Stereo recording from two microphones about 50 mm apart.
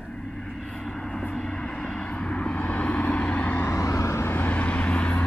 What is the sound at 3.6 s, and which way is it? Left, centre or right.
Vehicle, left.